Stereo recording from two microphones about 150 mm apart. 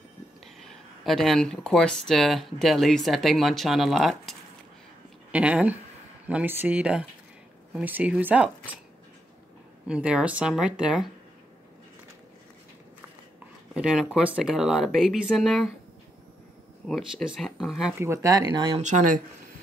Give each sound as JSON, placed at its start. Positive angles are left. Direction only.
{"t": 0.7, "sound": "speech", "side_deg": 0}
{"t": 9.8, "sound": "speech", "side_deg": -5}
{"t": 13.7, "sound": "speech", "side_deg": -5}
{"t": 16.8, "sound": "speech", "side_deg": 0}
{"t": 17.9, "sound": "speech", "side_deg": -20}
{"t": 18.8, "sound": "speech", "side_deg": -55}